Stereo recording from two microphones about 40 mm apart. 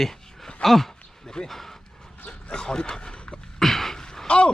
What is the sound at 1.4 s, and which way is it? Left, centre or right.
Speech, left.